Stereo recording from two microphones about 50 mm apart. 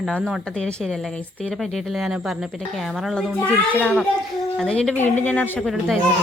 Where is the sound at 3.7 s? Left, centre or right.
Left.